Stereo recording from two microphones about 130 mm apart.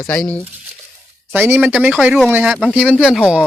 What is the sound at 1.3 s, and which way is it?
Speech, 15° right (ahead or behind).